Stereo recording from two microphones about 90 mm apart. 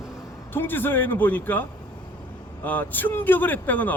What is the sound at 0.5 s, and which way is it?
Speech, 25° left (ahead or behind).